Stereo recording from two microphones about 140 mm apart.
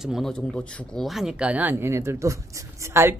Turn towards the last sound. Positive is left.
turn(degrees=-15)  # may be behind; listen again after turning